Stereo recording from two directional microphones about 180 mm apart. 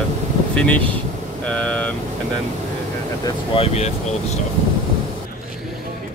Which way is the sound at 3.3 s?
30° left (ahead or behind).